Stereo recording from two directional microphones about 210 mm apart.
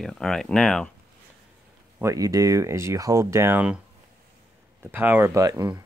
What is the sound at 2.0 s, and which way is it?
Speech, 15° right (ahead or behind).